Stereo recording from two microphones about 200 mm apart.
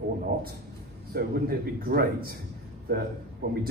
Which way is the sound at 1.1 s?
50° right (ahead or behind).